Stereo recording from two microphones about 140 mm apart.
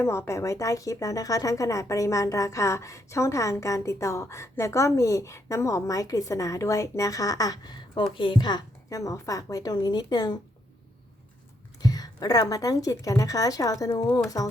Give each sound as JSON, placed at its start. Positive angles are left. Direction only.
{"t": 0.0, "sound": "speech", "side_deg": 20}
{"t": 11.8, "sound": "a woman's voice", "side_deg": 25}